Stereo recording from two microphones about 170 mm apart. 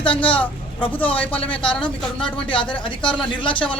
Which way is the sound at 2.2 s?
30° left (ahead or behind).